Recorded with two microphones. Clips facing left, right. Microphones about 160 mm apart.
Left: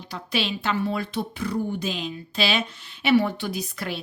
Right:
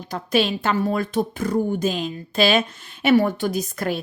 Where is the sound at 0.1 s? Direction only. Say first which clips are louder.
Right 7 dB; 45° right (ahead or behind).